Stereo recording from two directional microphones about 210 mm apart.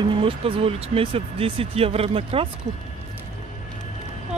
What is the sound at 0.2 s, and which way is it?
Speech, 25° right (ahead or behind).